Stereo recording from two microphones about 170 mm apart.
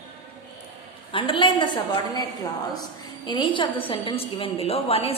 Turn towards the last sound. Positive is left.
turn(degrees=35)  # may be behind; listen again after turning